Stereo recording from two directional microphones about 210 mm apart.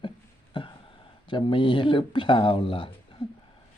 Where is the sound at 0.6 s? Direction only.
25° left (ahead or behind).